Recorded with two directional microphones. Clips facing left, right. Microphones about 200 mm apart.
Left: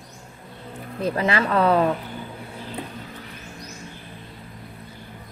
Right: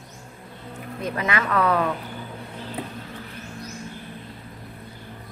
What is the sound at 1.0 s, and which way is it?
Speech, 30° left (ahead or behind).